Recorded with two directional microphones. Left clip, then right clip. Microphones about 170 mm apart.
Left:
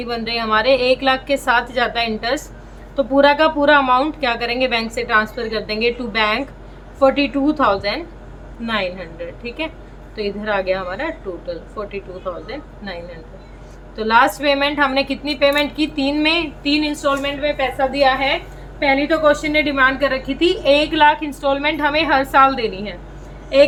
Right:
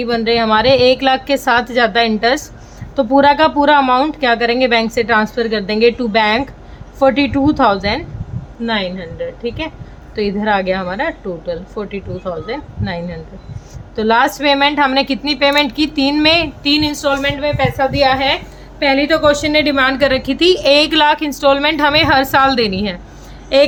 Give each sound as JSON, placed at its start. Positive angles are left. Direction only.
{"t": 0.0, "sound": "a woman's voice", "side_deg": -35}
{"t": 8.6, "sound": "a woman's voice", "side_deg": -25}
{"t": 9.4, "sound": "a woman's voice", "side_deg": -35}